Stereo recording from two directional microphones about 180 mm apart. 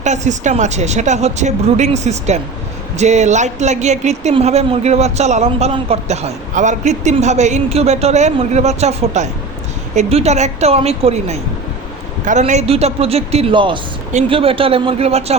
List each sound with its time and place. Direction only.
0.0 s speech: 40° right (ahead or behind)